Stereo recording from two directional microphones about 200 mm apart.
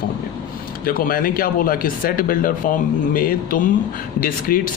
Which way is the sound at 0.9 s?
45° left (ahead or behind).